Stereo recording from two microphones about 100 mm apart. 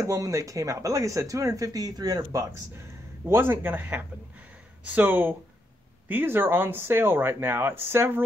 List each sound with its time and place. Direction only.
0.0 s speech: 35° right (ahead or behind)